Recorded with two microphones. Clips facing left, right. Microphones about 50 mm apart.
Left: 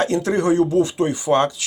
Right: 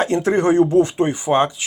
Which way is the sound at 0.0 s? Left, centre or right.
Right.